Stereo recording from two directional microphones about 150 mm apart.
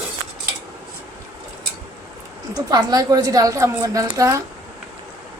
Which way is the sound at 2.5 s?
25° right (ahead or behind).